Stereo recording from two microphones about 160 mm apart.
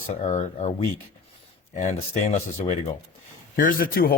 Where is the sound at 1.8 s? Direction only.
45° left (ahead or behind).